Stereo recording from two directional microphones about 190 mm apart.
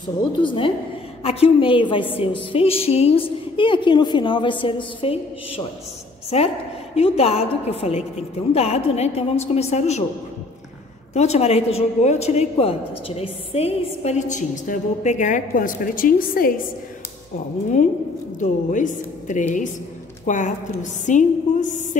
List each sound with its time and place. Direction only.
0.4 s a woman's voice: 25° left (ahead or behind)
11.1 s speech: 35° left (ahead or behind)
18.4 s speech: 40° left (ahead or behind)